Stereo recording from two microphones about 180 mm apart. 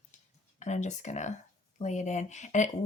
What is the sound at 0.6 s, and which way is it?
Speech, 40° left (ahead or behind).